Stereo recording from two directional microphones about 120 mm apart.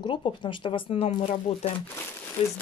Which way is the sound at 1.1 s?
55° left (ahead or behind).